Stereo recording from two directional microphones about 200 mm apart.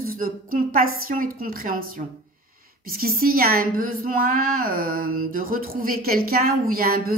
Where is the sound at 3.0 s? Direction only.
45° right (ahead or behind).